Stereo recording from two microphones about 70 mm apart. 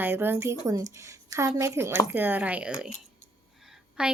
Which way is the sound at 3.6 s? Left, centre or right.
Centre.